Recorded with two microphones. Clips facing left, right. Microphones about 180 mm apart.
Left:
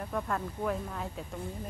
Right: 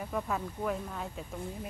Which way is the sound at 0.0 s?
5° right (ahead or behind).